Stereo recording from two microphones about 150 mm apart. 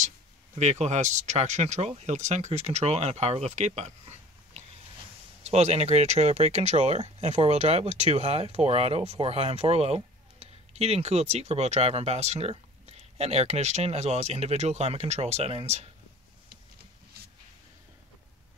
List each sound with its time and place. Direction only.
0.6 s speech: 50° right (ahead or behind)